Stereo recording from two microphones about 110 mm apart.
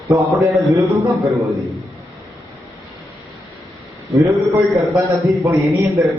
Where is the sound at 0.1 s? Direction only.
30° right (ahead or behind).